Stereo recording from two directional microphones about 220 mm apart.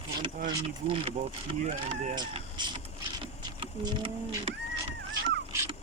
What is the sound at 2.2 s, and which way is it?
Speech, 20° right (ahead or behind).